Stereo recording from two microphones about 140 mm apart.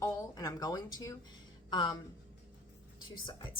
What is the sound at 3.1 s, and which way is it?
Speech, 35° left (ahead or behind).